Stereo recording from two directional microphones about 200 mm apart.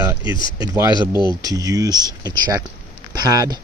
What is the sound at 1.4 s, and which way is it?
Speech, 20° right (ahead or behind).